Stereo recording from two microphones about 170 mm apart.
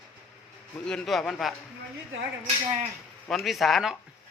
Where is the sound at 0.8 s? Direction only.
5° left (ahead or behind).